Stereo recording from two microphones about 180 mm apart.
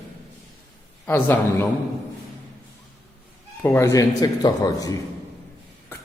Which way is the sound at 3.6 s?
15° left (ahead or behind).